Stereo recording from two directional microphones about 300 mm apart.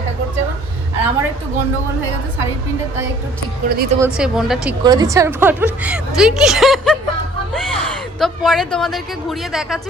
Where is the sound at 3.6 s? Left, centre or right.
Right.